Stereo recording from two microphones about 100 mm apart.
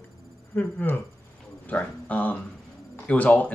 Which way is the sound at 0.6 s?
20° left (ahead or behind).